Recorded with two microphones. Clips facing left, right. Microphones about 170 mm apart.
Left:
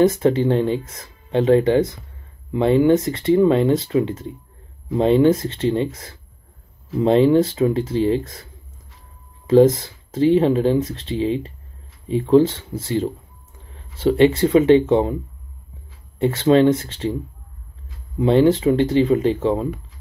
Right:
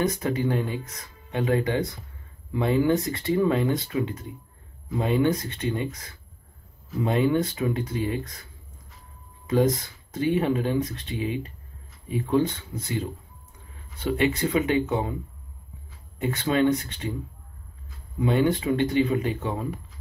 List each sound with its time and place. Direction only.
0.0 s speech: 25° left (ahead or behind)
9.5 s speech: 25° left (ahead or behind)
14.1 s speech: 30° left (ahead or behind)
16.2 s speech: 25° left (ahead or behind)
18.2 s speech: 25° left (ahead or behind)